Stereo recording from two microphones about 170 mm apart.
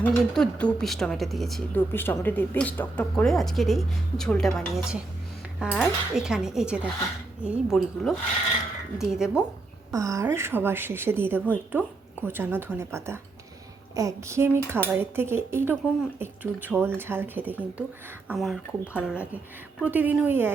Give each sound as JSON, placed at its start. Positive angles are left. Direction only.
{"t": 0.0, "sound": "speech", "side_deg": 10}
{"t": 1.9, "sound": "speech", "side_deg": 10}
{"t": 9.9, "sound": "speech", "side_deg": -20}